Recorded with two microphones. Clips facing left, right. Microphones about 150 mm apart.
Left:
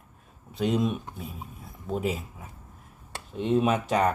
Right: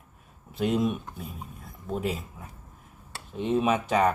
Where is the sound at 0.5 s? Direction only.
Centre (ahead or behind).